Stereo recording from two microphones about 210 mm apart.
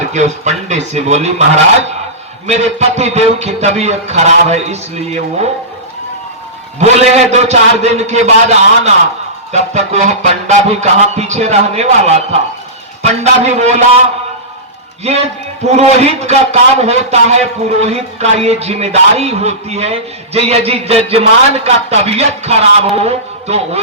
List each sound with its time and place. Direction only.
0.0 s a man's voice: 35° right (ahead or behind)
6.7 s a man's voice: 30° right (ahead or behind)
15.7 s a man's voice: 30° right (ahead or behind)